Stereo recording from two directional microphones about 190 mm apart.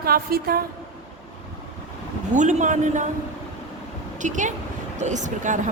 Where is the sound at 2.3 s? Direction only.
40° right (ahead or behind).